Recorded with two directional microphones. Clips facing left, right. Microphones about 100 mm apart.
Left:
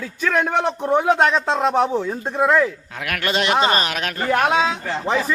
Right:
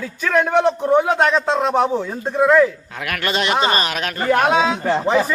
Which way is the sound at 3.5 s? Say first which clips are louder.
Even; centre (ahead or behind).